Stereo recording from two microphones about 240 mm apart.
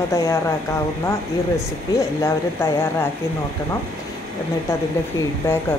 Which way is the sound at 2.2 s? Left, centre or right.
Centre.